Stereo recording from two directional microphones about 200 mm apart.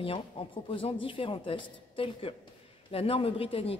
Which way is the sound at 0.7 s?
25° left (ahead or behind).